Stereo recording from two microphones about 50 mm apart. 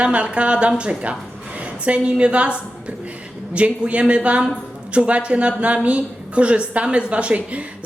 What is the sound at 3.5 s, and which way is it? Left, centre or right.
A woman's voice, right.